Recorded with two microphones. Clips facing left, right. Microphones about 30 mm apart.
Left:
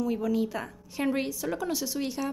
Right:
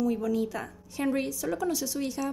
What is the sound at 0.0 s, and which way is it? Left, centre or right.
A woman's voice, centre.